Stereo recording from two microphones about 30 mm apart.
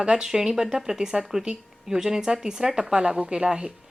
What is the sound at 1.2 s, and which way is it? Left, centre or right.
A woman's voice, centre.